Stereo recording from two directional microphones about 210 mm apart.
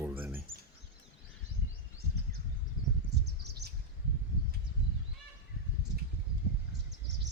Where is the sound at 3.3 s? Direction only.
50° right (ahead or behind).